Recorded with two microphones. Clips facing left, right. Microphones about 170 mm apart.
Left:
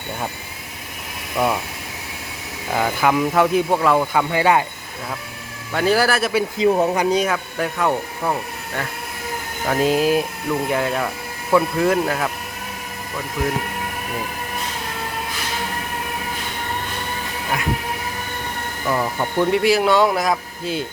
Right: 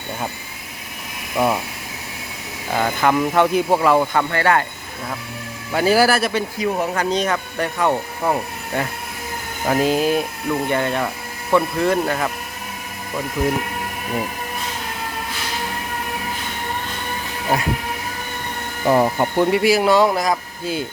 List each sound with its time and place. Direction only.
1.4 s speech: 5° right (ahead or behind)
2.7 s speech: centre (ahead or behind)
5.7 s speech: 5° right (ahead or behind)
6.6 s speech: 25° left (ahead or behind)
7.0 s speech: 10° left (ahead or behind)
8.3 s speech: 20° right (ahead or behind)
9.6 s speech: centre (ahead or behind)
18.9 s speech: 35° right (ahead or behind)
19.5 s speech: 5° right (ahead or behind)